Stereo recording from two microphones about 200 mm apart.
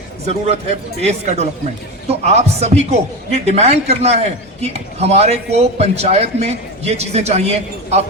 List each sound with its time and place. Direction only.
1.0 s speech: 35° right (ahead or behind)